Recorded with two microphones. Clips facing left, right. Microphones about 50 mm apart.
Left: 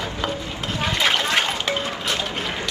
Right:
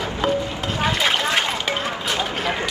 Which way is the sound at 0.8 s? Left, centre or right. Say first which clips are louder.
Right 1 dB; centre.